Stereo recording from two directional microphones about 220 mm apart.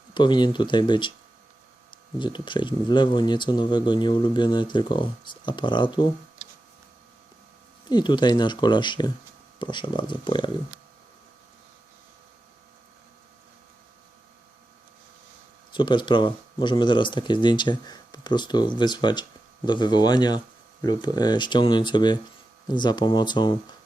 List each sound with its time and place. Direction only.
0.1 s speech: 20° left (ahead or behind)
7.9 s speech: 20° left (ahead or behind)
15.7 s speech: 20° left (ahead or behind)